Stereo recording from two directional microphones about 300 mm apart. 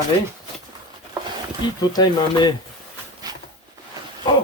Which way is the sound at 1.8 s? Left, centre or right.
Centre.